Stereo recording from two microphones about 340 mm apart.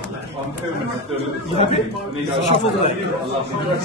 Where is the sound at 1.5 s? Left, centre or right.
Centre.